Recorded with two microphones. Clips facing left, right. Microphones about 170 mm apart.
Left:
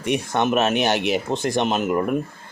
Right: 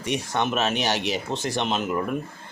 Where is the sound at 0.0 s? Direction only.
50° left (ahead or behind).